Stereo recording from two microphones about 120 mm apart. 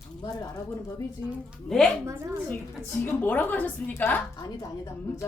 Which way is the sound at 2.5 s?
15° left (ahead or behind).